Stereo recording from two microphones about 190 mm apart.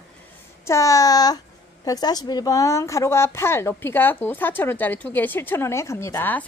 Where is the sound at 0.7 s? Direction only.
15° left (ahead or behind).